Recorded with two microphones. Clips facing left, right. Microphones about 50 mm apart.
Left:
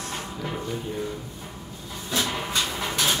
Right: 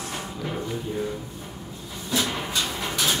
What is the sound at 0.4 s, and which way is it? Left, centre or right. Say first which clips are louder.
Music: right 1 dB; centre.